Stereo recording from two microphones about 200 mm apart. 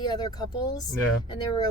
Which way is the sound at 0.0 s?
20° left (ahead or behind).